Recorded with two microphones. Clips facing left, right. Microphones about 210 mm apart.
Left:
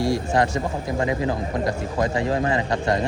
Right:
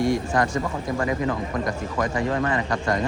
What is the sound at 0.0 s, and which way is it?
Speech, 25° left (ahead or behind).